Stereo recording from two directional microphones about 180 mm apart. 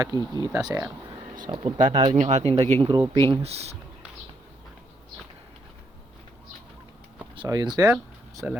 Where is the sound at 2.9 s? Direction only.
25° right (ahead or behind).